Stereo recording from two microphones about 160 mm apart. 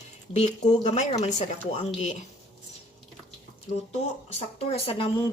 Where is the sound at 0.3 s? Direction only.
45° left (ahead or behind).